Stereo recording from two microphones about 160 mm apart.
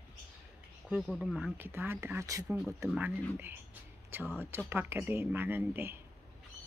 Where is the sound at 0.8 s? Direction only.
Centre (ahead or behind); by 2.4 s 20° right (ahead or behind).